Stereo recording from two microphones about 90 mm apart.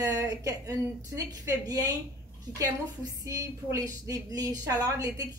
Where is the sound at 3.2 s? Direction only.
40° right (ahead or behind).